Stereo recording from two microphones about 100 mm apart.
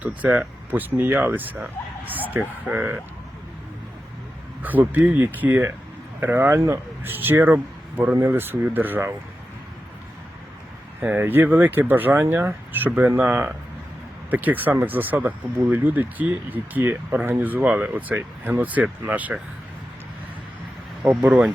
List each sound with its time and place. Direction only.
0.2 s speech: 15° right (ahead or behind)
4.6 s speech: 15° right (ahead or behind)
11.0 s speech: 20° right (ahead or behind)
21.0 s speech: 15° right (ahead or behind)